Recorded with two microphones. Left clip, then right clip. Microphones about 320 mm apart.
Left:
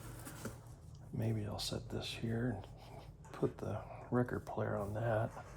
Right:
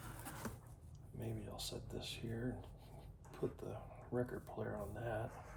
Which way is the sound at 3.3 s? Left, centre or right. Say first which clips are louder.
Left 6 dB; left.